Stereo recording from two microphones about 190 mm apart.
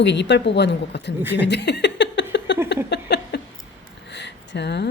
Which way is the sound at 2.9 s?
60° left (ahead or behind).